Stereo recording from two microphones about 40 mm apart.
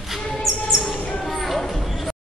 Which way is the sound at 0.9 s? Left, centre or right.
Left.